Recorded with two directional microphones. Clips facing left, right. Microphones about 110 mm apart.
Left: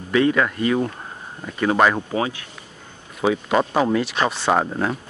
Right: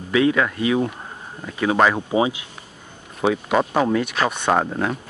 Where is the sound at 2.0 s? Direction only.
15° right (ahead or behind).